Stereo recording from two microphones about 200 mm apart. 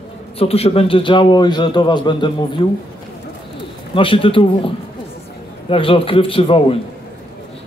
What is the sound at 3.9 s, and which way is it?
Speech, 25° left (ahead or behind).